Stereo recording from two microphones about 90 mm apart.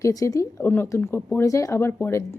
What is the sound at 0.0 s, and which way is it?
Speech, 40° left (ahead or behind).